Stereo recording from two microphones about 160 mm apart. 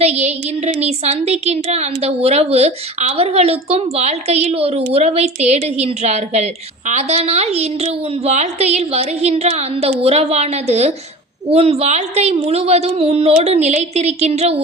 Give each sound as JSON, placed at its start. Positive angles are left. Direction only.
{"t": 0.0, "sound": "a woman's voice", "side_deg": -40}